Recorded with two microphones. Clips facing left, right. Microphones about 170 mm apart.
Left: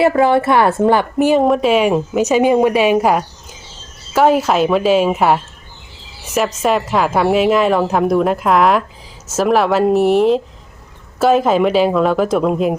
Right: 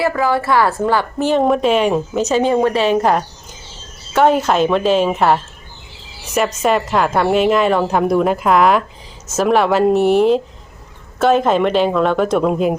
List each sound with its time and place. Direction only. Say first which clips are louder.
0.0 s speech: left 5 dB; 25° left (ahead or behind)
1.3 s a woman's voice: even; centre (ahead or behind)